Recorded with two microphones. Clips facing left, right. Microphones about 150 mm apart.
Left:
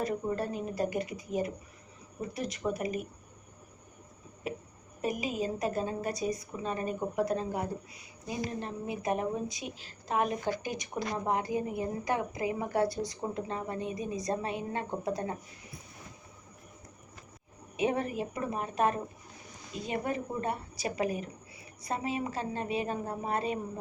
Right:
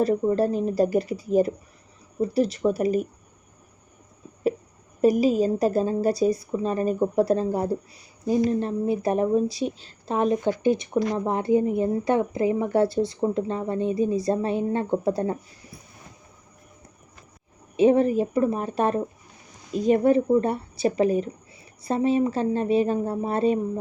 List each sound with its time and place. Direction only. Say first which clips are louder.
0.0 s a woman's voice: right 11 dB; 35° right (ahead or behind)
5.0 s a woman's voice: right 13 dB; 35° right (ahead or behind)
17.7 s a woman's voice: right 12 dB; 30° right (ahead or behind)